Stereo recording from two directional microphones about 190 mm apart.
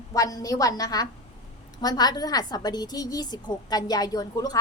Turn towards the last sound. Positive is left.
turn(degrees=20)  # may be behind; listen again after turning